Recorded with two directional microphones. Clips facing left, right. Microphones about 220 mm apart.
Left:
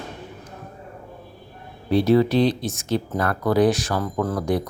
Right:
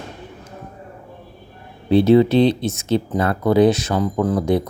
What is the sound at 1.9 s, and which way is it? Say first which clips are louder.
Speech: right 5 dB; 25° right (ahead or behind).